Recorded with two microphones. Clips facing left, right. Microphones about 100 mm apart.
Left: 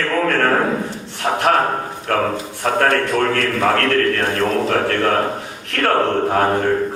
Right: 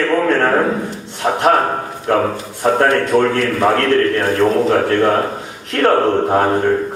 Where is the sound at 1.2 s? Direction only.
20° right (ahead or behind).